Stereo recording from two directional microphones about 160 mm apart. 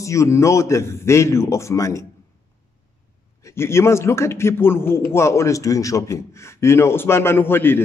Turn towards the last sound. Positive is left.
turn(degrees=15)  # may be behind; listen again after turning